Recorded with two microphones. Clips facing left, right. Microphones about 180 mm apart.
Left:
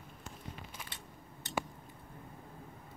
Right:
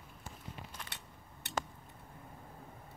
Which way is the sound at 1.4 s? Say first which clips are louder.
Left 1 dB; 65° right (ahead or behind).